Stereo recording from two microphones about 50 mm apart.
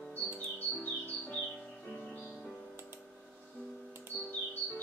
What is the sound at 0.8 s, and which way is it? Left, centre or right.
Music, left.